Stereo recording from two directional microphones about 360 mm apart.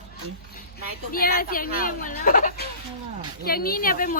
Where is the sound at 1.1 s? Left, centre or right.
Left.